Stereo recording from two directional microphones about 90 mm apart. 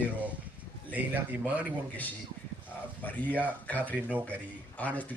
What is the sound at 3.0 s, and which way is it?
Speech, 20° left (ahead or behind).